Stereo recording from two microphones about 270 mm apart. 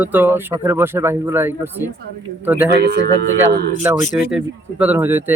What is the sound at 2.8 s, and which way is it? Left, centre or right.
Speech, right.